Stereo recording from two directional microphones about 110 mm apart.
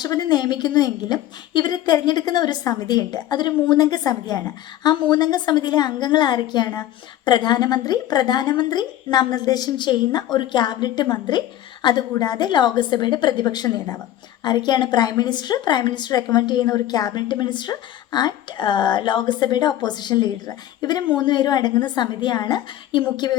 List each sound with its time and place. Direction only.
0.0 s a woman's voice: 35° left (ahead or behind)